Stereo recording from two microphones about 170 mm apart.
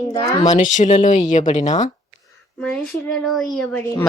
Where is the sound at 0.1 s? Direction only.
25° left (ahead or behind).